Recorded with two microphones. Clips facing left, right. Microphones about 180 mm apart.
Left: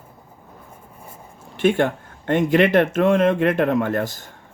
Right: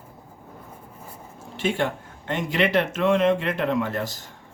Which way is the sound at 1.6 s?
55° left (ahead or behind).